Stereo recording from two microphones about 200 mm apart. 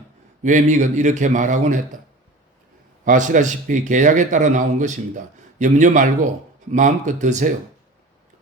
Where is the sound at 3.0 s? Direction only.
40° right (ahead or behind).